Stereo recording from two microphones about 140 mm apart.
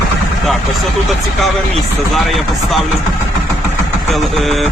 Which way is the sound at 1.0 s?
Centre (ahead or behind).